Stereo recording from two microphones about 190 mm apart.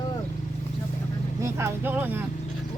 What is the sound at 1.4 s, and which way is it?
Speech, 15° right (ahead or behind).